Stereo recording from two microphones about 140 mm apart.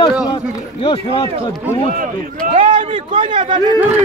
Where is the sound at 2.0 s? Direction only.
70° right (ahead or behind).